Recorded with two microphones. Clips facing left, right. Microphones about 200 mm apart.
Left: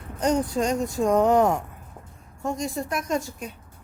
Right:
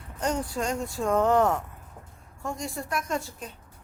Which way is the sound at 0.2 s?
20° left (ahead or behind).